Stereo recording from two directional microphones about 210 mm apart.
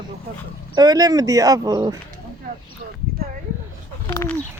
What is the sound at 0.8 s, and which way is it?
Speech, 20° right (ahead or behind).